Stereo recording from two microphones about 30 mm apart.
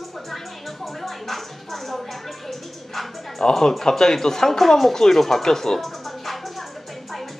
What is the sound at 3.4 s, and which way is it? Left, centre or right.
Speech, centre.